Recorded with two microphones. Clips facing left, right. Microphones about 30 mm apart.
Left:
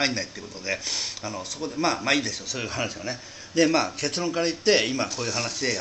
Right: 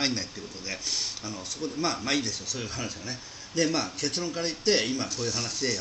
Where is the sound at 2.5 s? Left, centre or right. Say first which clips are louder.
Left 5 dB; left.